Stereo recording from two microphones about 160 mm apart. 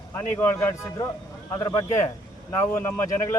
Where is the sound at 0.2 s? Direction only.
15° left (ahead or behind).